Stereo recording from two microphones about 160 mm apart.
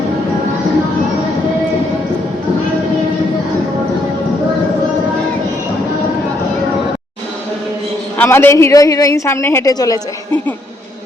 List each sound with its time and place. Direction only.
8.2 s a woman's voice: 15° left (ahead or behind)